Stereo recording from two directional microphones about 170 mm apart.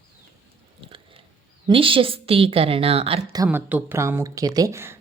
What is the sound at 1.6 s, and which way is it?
A woman's voice, 30° right (ahead or behind).